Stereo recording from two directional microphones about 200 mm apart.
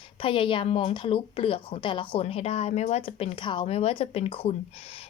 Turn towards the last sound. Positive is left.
turn(degrees=30)  # may be behind; listen again after turning